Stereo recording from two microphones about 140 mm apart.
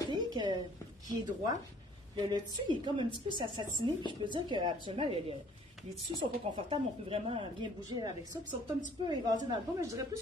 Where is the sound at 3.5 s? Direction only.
35° right (ahead or behind).